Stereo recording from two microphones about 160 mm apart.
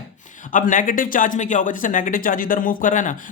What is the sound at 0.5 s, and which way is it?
Speech, 55° left (ahead or behind).